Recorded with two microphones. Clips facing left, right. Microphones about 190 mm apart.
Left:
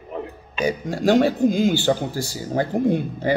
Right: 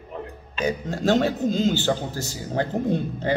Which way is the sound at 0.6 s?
10° left (ahead or behind).